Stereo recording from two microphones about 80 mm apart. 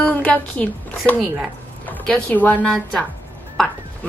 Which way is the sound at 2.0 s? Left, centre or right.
Centre.